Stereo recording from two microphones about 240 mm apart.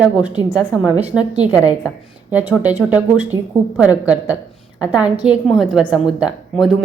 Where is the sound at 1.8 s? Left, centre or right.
Centre.